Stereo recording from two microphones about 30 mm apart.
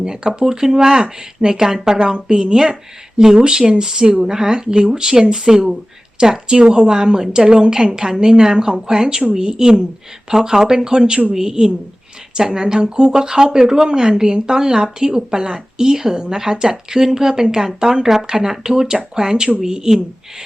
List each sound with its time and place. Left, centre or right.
0.0 s a woman's voice: right
12.3 s a woman's voice: right